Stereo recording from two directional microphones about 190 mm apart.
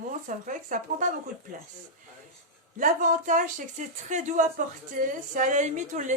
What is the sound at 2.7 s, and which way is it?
Speech, 40° right (ahead or behind).